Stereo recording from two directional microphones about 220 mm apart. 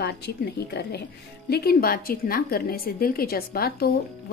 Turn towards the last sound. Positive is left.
turn(degrees=45)  # may be behind; listen again after turning